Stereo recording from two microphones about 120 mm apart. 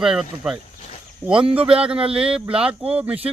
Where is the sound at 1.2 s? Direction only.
15° right (ahead or behind).